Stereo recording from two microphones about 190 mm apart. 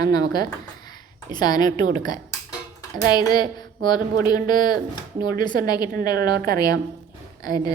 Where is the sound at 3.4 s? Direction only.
25° left (ahead or behind).